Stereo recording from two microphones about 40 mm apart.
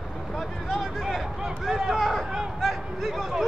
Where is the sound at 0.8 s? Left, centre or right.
Centre.